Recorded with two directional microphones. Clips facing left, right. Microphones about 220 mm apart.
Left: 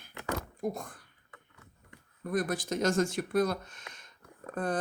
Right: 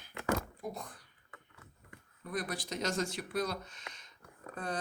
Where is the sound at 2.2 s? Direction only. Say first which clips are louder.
Left 7 dB; 45° left (ahead or behind).